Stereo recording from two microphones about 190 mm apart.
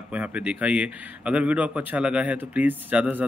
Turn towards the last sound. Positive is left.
turn(degrees=-5)  # may be behind; listen again after turning